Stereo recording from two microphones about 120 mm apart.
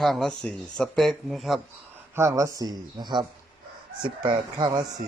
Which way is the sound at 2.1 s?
25° right (ahead or behind).